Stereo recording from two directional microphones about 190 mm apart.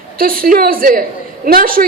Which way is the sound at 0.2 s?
50° right (ahead or behind).